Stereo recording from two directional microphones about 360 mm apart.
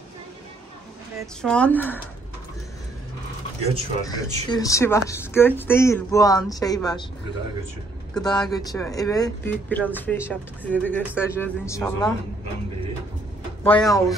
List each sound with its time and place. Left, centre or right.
1.2 s speech: centre
3.6 s speech: centre
8.1 s speech: centre
13.7 s speech: centre